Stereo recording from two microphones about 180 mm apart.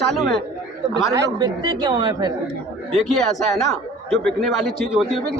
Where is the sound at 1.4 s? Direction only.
25° right (ahead or behind).